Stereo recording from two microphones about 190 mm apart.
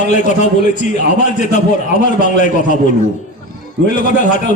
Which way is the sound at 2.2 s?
40° left (ahead or behind).